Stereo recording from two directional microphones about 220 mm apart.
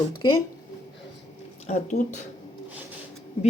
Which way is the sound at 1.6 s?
30° left (ahead or behind).